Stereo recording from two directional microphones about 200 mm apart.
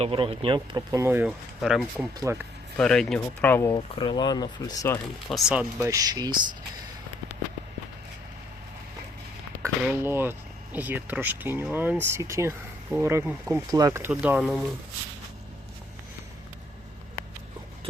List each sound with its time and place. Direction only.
0.0 s speech: 25° right (ahead or behind); by 2.0 s centre (ahead or behind)
2.3 s speech: 15° right (ahead or behind)
2.7 s speech: 5° left (ahead or behind)
3.9 s speech: 25° left (ahead or behind)
5.3 s speech: 5° right (ahead or behind)
9.6 s speech: 10° right (ahead or behind)